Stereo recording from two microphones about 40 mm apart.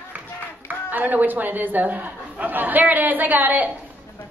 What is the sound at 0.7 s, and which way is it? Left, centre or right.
A woman's voice, right.